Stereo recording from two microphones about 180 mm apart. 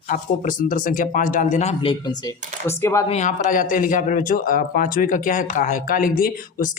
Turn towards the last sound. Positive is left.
turn(degrees=50)  # may be behind; listen again after turning